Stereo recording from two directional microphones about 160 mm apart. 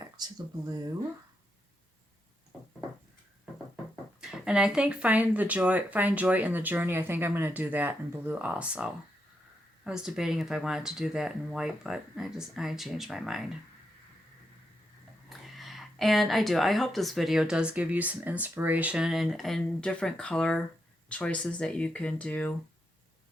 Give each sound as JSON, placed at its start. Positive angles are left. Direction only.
{"t": 0.0, "sound": "speech", "side_deg": -25}
{"t": 4.2, "sound": "speech", "side_deg": -5}
{"t": 15.3, "sound": "speech", "side_deg": 0}